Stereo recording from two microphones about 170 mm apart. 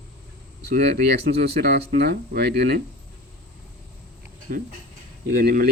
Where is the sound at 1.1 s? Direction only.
70° right (ahead or behind).